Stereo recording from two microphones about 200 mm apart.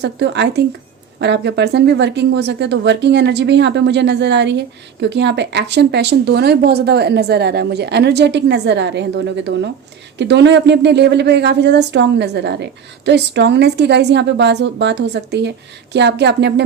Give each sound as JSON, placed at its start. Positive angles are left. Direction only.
{"t": 0.0, "sound": "speech", "side_deg": -60}